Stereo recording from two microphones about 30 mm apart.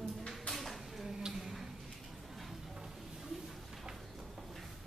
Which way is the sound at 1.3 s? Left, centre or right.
Centre.